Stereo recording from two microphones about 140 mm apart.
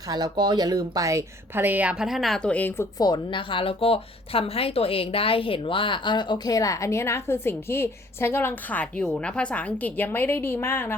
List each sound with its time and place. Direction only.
0.1 s speech: 30° right (ahead or behind); by 2.8 s 10° left (ahead or behind)
3.0 s a woman's voice: 35° left (ahead or behind); by 10.9 s 15° left (ahead or behind)